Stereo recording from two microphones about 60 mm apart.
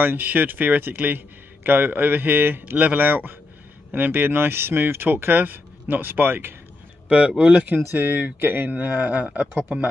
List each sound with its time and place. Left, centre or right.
0.0 s speech: right
7.1 s speech: right